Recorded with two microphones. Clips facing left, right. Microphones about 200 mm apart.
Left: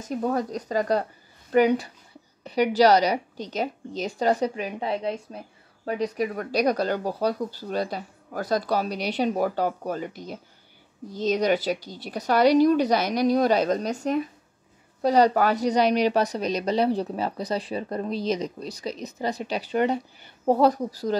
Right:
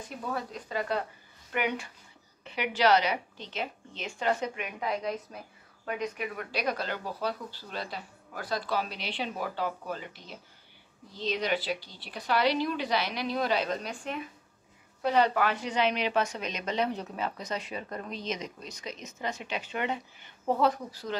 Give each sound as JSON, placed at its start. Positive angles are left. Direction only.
{"t": 0.0, "sound": "a woman's voice", "side_deg": 40}